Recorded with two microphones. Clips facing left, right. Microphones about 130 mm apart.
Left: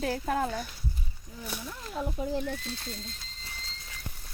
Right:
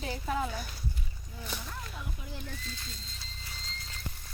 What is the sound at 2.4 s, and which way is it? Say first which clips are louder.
Speech: left 8 dB; 60° left (ahead or behind).